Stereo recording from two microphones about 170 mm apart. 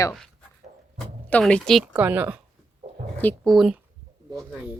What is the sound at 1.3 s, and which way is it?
A woman's voice, 5° left (ahead or behind).